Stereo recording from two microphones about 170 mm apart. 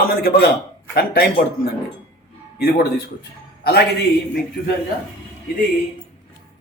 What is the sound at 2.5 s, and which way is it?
Speech, 65° left (ahead or behind).